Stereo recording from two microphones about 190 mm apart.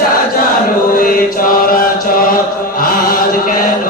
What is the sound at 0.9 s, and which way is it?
Chant, 45° left (ahead or behind).